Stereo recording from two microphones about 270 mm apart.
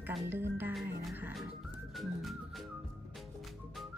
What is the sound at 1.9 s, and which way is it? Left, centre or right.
Music, centre.